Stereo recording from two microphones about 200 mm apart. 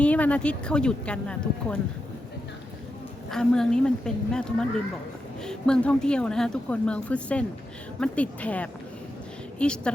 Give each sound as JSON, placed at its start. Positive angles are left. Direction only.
{"t": 0.0, "sound": "a woman's voice", "side_deg": 5}
{"t": 3.2, "sound": "a woman's voice", "side_deg": 5}